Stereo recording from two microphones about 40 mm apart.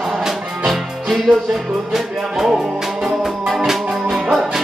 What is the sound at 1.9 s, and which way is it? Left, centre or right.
Music, centre.